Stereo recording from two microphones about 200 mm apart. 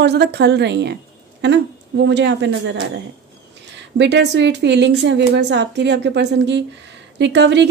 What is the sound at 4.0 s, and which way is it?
Speech, 60° right (ahead or behind).